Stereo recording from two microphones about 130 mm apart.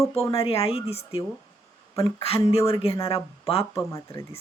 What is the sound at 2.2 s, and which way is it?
Speech, 50° left (ahead or behind).